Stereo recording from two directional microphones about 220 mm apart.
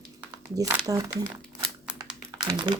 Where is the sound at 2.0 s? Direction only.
20° right (ahead or behind).